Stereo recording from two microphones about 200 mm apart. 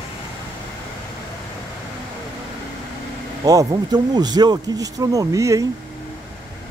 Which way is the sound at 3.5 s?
20° right (ahead or behind).